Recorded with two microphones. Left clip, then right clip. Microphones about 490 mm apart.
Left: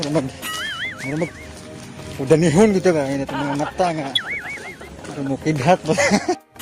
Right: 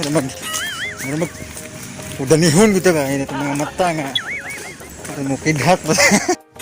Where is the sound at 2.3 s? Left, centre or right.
Left.